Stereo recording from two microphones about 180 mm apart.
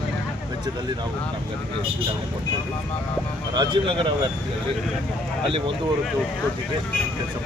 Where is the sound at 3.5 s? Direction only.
30° right (ahead or behind).